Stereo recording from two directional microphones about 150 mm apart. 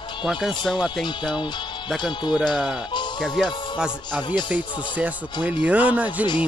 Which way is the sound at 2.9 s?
30° left (ahead or behind).